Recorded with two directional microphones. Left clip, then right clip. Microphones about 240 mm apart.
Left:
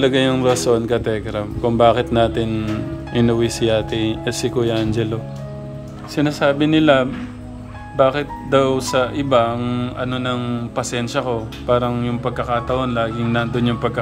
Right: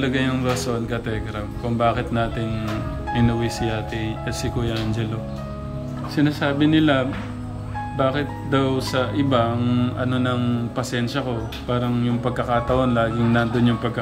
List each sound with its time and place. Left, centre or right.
0.0 s a man's voice: left
6.1 s speech: centre